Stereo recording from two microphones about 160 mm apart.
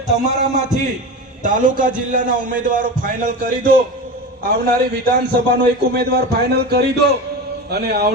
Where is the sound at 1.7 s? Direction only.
55° right (ahead or behind).